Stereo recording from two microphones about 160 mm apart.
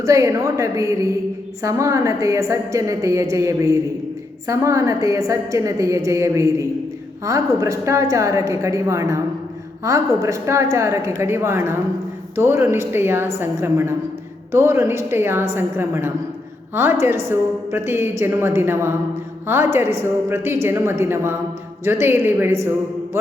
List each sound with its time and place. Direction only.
0.0 s a woman's voice: 20° right (ahead or behind)